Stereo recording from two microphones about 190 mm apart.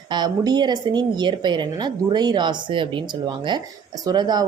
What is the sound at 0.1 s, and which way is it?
Speech, 20° right (ahead or behind).